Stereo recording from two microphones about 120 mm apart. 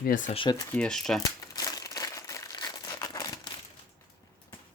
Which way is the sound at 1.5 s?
30° left (ahead or behind).